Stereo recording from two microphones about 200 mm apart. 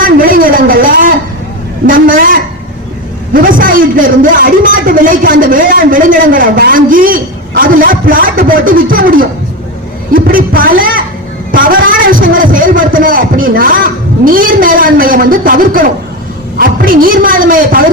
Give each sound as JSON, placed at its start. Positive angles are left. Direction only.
{"t": 0.0, "sound": "a man's voice", "side_deg": -45}